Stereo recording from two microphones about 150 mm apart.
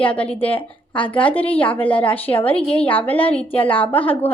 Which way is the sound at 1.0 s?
10° left (ahead or behind).